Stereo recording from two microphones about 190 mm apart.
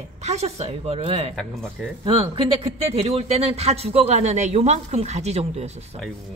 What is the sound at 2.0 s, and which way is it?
A woman's voice, 30° right (ahead or behind).